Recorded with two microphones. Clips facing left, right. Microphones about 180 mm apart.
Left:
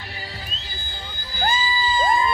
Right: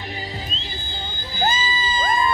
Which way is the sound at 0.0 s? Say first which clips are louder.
Right 5 dB; 15° right (ahead or behind).